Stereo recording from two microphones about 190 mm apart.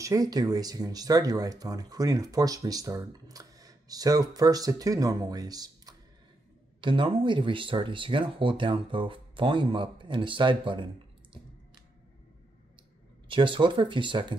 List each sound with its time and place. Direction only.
0.0 s speech: 20° right (ahead or behind)
13.3 s speech: 25° right (ahead or behind)